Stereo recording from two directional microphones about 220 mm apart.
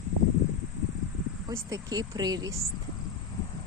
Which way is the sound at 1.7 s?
15° right (ahead or behind).